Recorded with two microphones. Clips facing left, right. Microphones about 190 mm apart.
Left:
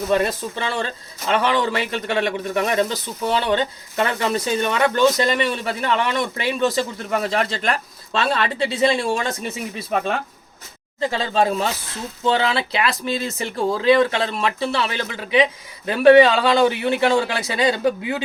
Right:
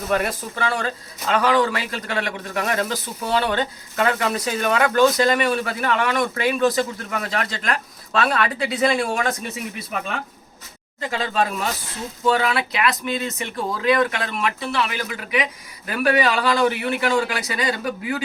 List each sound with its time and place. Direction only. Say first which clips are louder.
0.1 s speech: left 2 dB; 25° left (ahead or behind)
11.0 s speech: left 3 dB; 30° left (ahead or behind)